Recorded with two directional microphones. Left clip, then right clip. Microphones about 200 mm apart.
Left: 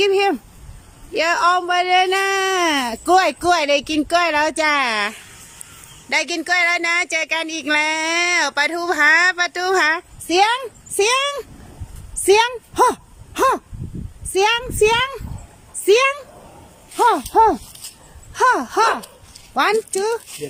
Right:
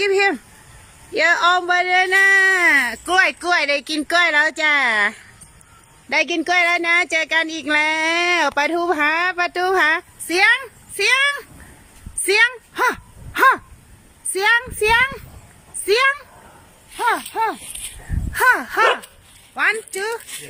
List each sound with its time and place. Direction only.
0.0 s a sound: 15° left (ahead or behind)
1.1 s speech: 5° left (ahead or behind); by 17.6 s 25° left (ahead or behind)
18.3 s speech: 15° left (ahead or behind)